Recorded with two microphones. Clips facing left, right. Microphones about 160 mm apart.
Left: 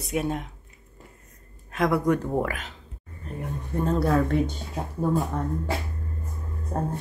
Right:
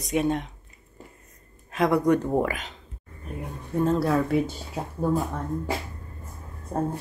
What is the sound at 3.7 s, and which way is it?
Speech, centre (ahead or behind).